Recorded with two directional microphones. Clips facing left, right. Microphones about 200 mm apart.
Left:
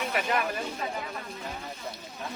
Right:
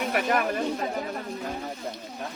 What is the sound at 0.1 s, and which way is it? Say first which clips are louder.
Speech: right 5 dB; 50° right (ahead or behind).